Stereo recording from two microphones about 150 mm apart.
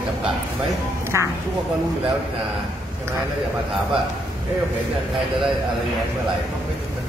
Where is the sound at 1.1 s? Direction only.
20° right (ahead or behind).